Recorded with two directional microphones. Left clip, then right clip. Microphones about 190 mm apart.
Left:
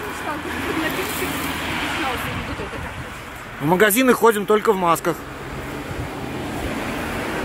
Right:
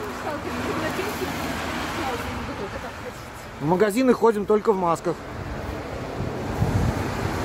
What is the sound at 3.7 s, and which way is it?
Speech, centre (ahead or behind).